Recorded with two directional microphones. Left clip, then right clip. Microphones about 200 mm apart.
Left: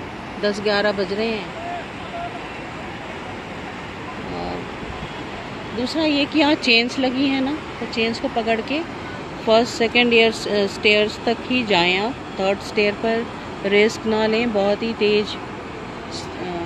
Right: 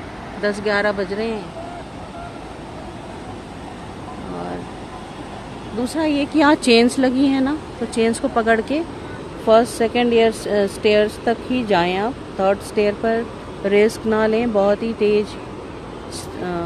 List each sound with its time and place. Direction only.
0.4 s speech: centre (ahead or behind)
5.9 s speech: 10° right (ahead or behind)
9.5 s speech: 10° right (ahead or behind)